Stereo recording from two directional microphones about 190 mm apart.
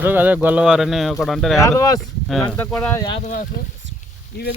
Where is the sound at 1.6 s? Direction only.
20° left (ahead or behind).